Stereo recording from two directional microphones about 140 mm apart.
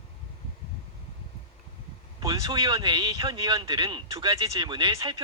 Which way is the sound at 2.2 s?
25° right (ahead or behind).